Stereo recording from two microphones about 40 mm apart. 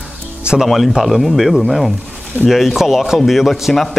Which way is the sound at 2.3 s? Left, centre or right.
Right.